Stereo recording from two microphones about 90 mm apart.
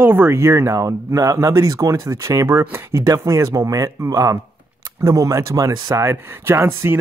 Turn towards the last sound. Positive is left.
turn(degrees=-25)  # may be behind; listen again after turning